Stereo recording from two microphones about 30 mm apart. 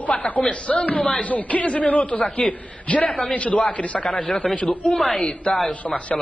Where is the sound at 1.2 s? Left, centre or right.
Left.